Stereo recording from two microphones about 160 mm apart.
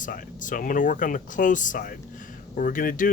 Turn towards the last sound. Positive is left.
turn(degrees=60)  # may be behind; listen again after turning